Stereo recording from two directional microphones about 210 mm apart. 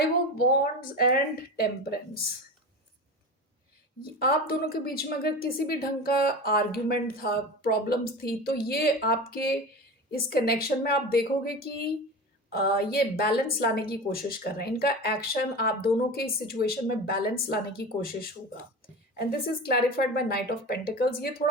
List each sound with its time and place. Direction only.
0.3 s a woman's voice: 45° left (ahead or behind)
4.2 s a woman's voice: 45° left (ahead or behind)